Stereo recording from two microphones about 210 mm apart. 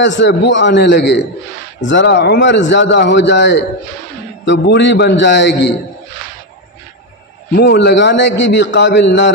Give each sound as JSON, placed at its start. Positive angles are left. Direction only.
{"t": 0.0, "sound": "a man's voice", "side_deg": 60}
{"t": 7.5, "sound": "a man's voice", "side_deg": 55}